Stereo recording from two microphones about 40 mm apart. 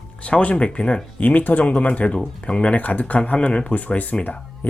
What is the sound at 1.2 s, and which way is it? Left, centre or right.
Speech, left.